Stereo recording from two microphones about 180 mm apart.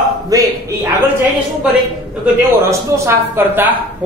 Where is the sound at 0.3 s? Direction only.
20° right (ahead or behind).